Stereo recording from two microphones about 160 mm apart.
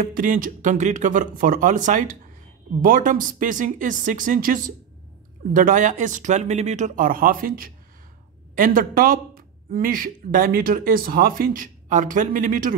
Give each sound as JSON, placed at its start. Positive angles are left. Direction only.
{"t": 0.0, "sound": "speech", "side_deg": -55}